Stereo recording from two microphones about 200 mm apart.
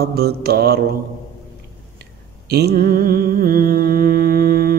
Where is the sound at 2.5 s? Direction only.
50° right (ahead or behind).